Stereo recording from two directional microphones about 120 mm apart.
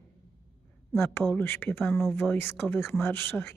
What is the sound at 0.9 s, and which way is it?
Speech, 20° left (ahead or behind).